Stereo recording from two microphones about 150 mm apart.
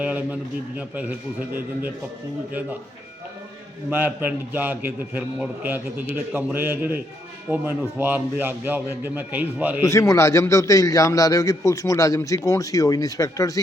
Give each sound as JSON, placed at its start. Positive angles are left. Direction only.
{"t": 0.0, "sound": "a man's voice", "side_deg": -10}
{"t": 3.8, "sound": "a man's voice", "side_deg": -10}
{"t": 9.8, "sound": "a man's voice", "side_deg": 20}